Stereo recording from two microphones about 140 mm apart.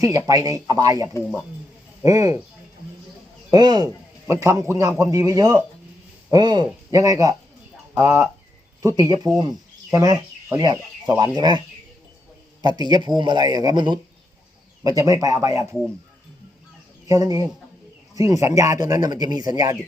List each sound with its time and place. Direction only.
0.3 s a man's voice: 25° right (ahead or behind)
3.5 s a man's voice: 30° right (ahead or behind)
12.6 s a man's voice: 30° right (ahead or behind)
17.1 s a man's voice: 25° right (ahead or behind)